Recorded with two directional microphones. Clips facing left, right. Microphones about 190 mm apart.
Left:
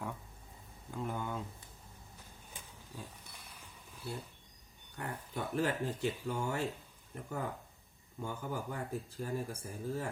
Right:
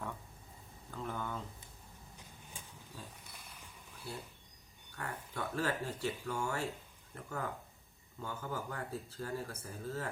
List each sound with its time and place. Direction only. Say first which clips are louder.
0.9 s a sound: left 2 dB; 15° left (ahead or behind)
2.9 s wild animals: left 3 dB; 15° left (ahead or behind)
4.9 s speech: left 1 dB; 20° left (ahead or behind)